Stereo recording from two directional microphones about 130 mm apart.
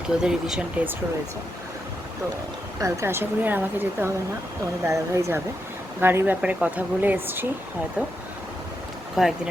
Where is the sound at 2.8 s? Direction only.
20° right (ahead or behind).